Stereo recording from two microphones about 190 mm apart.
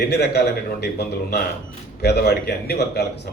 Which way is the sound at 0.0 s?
60° left (ahead or behind).